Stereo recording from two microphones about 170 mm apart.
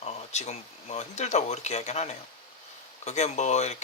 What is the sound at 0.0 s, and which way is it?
Speech, 40° left (ahead or behind).